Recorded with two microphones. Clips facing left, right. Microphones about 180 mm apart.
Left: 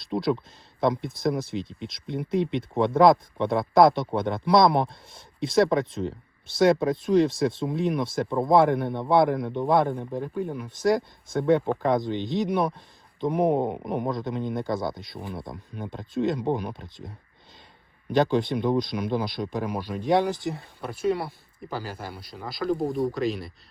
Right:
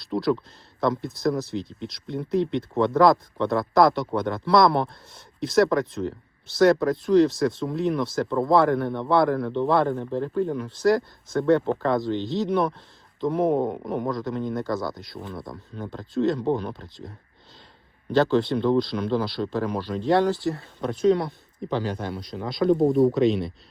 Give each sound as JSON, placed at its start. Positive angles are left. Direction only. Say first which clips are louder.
{"t": 0.0, "sound": "speech", "louder": "right 2 dB", "side_deg": 20}
{"t": 18.1, "sound": "speech", "louder": "right 2 dB", "side_deg": 15}
{"t": 20.8, "sound": "speech", "louder": "right 6 dB", "side_deg": 5}